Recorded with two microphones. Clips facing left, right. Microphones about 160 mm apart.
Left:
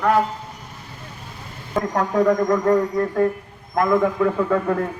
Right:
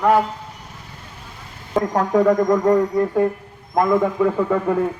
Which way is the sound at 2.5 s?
15° right (ahead or behind).